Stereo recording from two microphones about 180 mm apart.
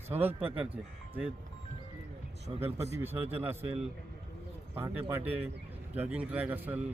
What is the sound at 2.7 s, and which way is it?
Speech, 35° right (ahead or behind).